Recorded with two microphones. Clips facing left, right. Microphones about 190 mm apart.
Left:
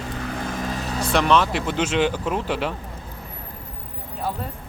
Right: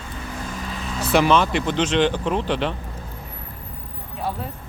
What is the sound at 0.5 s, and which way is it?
Vehicle, 45° left (ahead or behind).